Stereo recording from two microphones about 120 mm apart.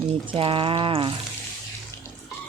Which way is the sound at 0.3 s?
50° right (ahead or behind).